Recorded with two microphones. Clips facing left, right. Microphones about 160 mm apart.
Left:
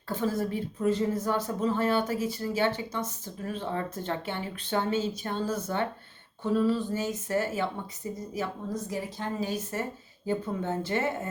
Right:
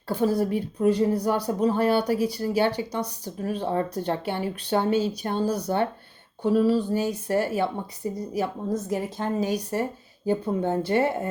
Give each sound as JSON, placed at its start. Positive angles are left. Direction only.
{"t": 0.1, "sound": "speech", "side_deg": -35}
{"t": 8.9, "sound": "a woman's voice", "side_deg": -50}
{"t": 9.6, "sound": "speech", "side_deg": -40}